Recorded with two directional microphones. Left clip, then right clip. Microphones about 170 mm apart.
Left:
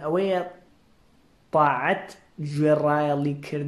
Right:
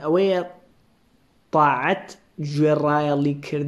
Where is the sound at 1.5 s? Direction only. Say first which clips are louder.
Right 2 dB; 25° right (ahead or behind).